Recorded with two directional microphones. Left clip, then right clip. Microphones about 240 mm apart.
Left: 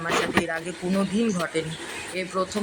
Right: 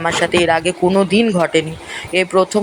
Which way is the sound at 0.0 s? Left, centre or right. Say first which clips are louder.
Right 9 dB; right.